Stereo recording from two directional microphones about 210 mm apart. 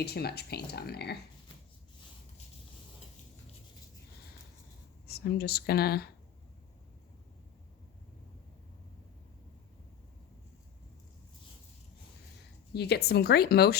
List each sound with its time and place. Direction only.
0.0 s speech: 50° left (ahead or behind)
5.0 s speech: 50° left (ahead or behind)
12.7 s speech: 50° left (ahead or behind)